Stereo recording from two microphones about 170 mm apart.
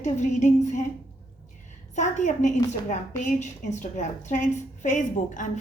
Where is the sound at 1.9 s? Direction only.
45° left (ahead or behind).